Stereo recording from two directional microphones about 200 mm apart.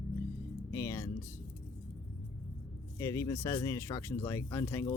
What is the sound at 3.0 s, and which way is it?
Speech, 15° left (ahead or behind).